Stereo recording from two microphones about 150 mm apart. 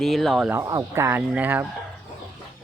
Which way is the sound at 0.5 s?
20° right (ahead or behind).